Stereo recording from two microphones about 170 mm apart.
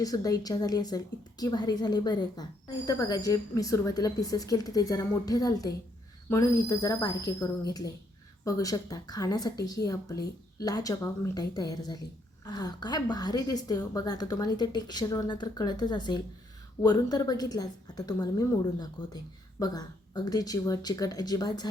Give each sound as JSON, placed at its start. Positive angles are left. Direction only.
{"t": 0.0, "sound": "a woman's voice", "side_deg": 20}